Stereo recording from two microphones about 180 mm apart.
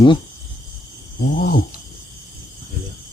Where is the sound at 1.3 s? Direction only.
55° left (ahead or behind).